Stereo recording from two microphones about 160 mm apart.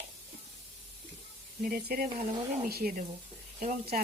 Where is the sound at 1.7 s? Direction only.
70° right (ahead or behind).